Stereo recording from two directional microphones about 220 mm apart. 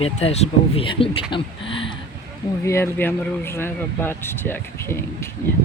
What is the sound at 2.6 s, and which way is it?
Speech, 10° left (ahead or behind).